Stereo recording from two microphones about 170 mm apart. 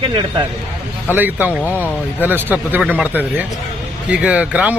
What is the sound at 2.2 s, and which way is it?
Speech, 10° right (ahead or behind).